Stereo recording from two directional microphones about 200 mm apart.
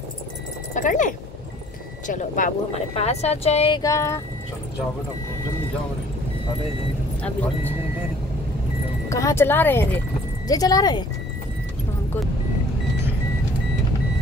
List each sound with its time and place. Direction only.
0.7 s speech: 40° left (ahead or behind)
3.8 s speech: 15° left (ahead or behind)
9.1 s speech: 15° left (ahead or behind)